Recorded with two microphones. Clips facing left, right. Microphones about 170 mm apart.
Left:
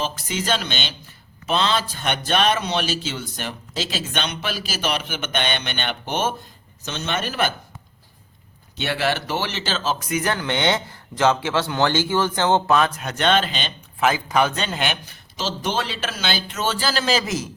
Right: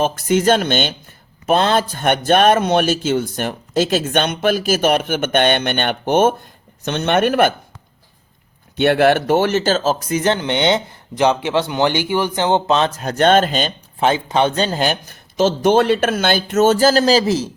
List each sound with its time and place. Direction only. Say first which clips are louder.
0.0 s speech: right 11 dB; 50° right (ahead or behind)
8.7 s speech: right 10 dB; 55° right (ahead or behind)
14.0 s speech: right 4 dB; 30° right (ahead or behind)